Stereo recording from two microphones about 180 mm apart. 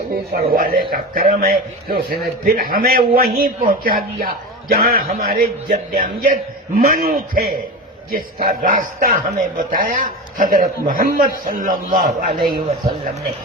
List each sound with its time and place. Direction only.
0.3 s a man's voice: 55° right (ahead or behind)